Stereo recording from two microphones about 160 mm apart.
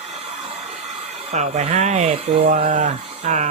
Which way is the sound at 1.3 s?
45° right (ahead or behind).